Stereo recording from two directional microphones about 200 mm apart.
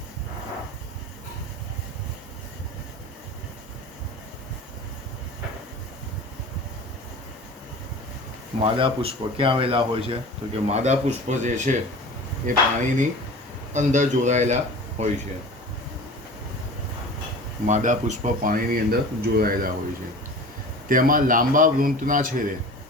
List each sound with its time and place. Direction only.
8.6 s a man's voice: 25° right (ahead or behind)
17.7 s a man's voice: 35° right (ahead or behind)
20.8 s a man's voice: 45° right (ahead or behind)